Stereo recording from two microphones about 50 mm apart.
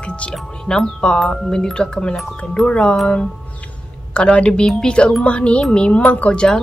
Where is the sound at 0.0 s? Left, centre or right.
Left.